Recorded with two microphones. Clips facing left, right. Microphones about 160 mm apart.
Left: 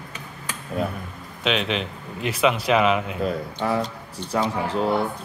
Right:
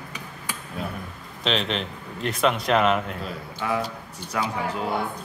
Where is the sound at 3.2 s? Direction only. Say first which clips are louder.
Left 5 dB; 35° left (ahead or behind).